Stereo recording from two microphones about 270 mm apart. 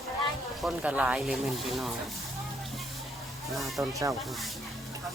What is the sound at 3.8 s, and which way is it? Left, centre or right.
Speech, centre.